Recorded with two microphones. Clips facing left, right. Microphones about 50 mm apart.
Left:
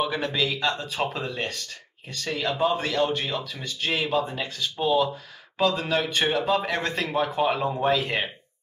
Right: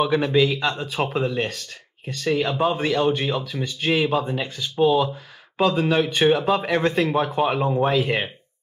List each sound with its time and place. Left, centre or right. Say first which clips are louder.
0.0 s speech: right 7 dB; centre